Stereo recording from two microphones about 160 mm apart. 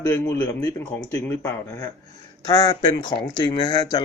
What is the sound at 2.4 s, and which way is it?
Speech, 25° left (ahead or behind).